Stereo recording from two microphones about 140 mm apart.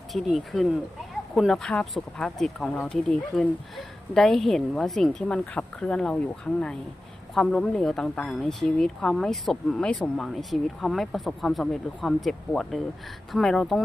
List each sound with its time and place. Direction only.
0.1 s speech: centre (ahead or behind)